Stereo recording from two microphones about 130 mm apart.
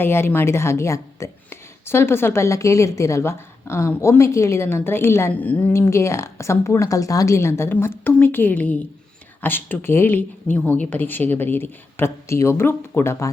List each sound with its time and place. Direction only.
0.0 s a woman's voice: 20° left (ahead or behind)